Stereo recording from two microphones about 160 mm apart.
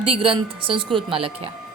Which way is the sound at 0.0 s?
35° right (ahead or behind).